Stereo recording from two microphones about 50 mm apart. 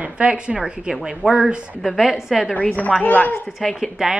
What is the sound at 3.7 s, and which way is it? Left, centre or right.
Speech, centre.